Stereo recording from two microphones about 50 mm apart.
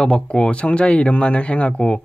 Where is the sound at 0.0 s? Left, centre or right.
Centre.